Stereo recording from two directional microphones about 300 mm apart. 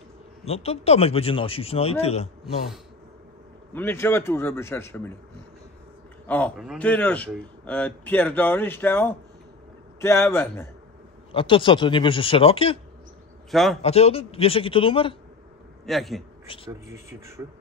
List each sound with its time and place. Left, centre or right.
0.5 s speech: centre
3.7 s speech: centre
6.2 s a man's voice: centre
13.5 s a man's voice: centre
13.8 s speech: centre
15.8 s a man's voice: centre
16.5 s speech: centre
16.9 s speech: centre